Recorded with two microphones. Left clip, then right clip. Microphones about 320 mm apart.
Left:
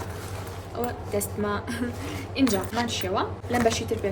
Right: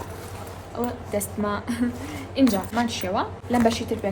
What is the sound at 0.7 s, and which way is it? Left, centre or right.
A woman's voice, centre.